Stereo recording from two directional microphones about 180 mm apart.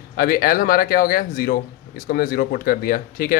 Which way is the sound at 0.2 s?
55° left (ahead or behind).